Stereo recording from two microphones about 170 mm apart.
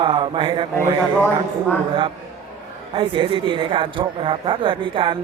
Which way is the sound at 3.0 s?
30° right (ahead or behind).